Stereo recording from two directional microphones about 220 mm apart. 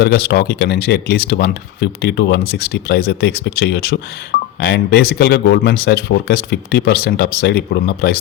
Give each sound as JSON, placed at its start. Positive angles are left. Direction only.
{"t": 0.0, "sound": "speech", "side_deg": 45}